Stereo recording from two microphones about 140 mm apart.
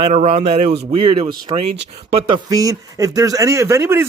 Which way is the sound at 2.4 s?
25° right (ahead or behind).